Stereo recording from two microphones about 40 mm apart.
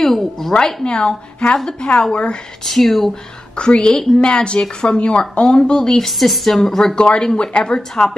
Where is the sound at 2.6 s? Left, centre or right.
Centre.